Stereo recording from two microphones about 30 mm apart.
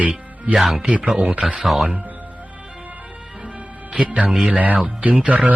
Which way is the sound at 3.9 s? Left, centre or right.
Right.